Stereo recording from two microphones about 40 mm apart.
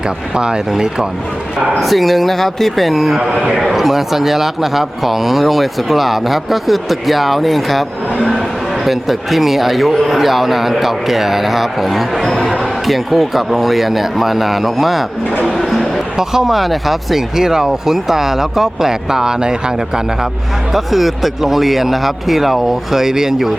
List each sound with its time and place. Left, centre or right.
0.7 s speech: centre
1.7 s a man's voice: centre
16.1 s speech: centre
20.7 s a man's voice: centre